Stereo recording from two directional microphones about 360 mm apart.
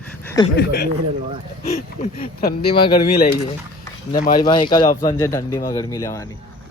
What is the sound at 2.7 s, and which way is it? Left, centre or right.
Speech, centre.